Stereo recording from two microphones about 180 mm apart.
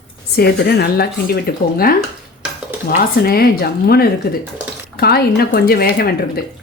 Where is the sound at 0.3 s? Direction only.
60° left (ahead or behind).